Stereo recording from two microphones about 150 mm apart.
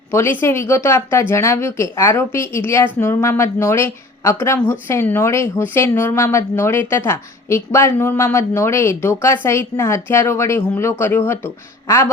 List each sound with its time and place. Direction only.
0.1 s a woman's voice: 15° left (ahead or behind)